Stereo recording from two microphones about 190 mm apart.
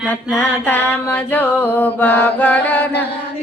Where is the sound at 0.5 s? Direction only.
10° left (ahead or behind).